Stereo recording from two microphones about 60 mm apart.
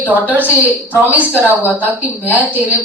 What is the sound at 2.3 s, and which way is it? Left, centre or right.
Speech, right.